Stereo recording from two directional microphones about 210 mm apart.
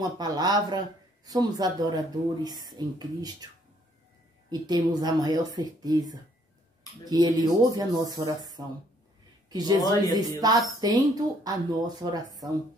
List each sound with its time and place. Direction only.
0.2 s speech: 20° right (ahead or behind)
4.5 s speech: 20° right (ahead or behind)
9.8 s speech: 15° left (ahead or behind)
10.1 s speech: 20° right (ahead or behind)